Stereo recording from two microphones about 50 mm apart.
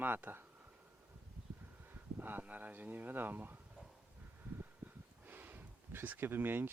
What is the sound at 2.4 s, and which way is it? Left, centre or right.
Speech, right.